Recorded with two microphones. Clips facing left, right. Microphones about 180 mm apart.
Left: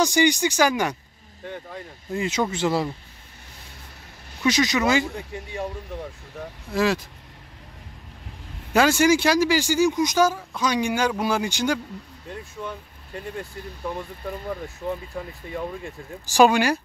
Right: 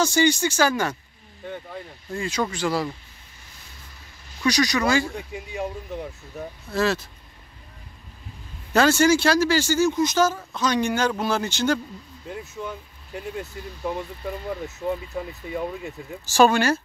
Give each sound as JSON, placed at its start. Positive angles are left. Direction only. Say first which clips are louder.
{"t": 0.0, "sound": "speech", "louder": "even", "side_deg": 15}
{"t": 1.4, "sound": "speech", "louder": "right 1 dB", "side_deg": 0}
{"t": 2.1, "sound": "speech", "louder": "left 2 dB", "side_deg": 20}
{"t": 4.4, "sound": "speech", "louder": "even", "side_deg": 20}
{"t": 6.7, "sound": "speech", "louder": "left 1 dB", "side_deg": 15}
{"t": 8.7, "sound": "speech", "louder": "even", "side_deg": 15}
{"t": 12.3, "sound": "speech", "louder": "right 1 dB", "side_deg": -5}
{"t": 16.3, "sound": "speech", "louder": "left 1 dB", "side_deg": 15}